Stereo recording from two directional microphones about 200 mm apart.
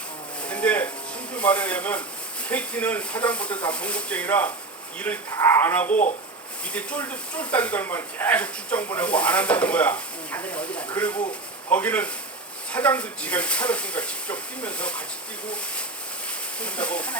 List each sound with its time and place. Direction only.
0.4 s a sound: 5° left (ahead or behind)
1.3 s speech: 5° left (ahead or behind)
5.9 s speech: 40° left (ahead or behind)
6.7 s speech: 5° left (ahead or behind)
16.6 s speech: 5° left (ahead or behind)